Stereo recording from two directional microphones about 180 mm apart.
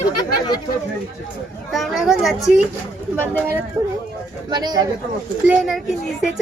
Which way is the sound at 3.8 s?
15° right (ahead or behind).